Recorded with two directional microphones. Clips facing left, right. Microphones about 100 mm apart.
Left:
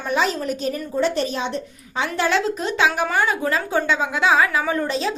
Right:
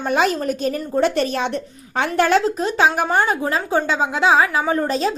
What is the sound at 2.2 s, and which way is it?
A woman's voice, 45° right (ahead or behind).